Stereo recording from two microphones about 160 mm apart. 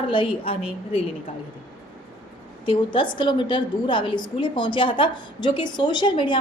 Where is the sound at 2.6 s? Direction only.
30° left (ahead or behind).